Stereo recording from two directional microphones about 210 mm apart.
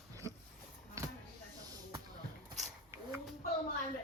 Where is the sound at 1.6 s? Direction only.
15° right (ahead or behind).